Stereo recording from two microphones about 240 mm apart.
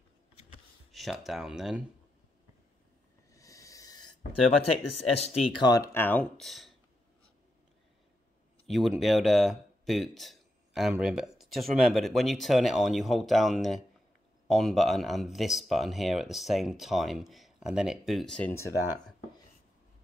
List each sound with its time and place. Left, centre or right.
0.9 s speech: centre
3.3 s a sound: centre
4.9 s speech: left
5.7 s speech: centre
8.6 s speech: centre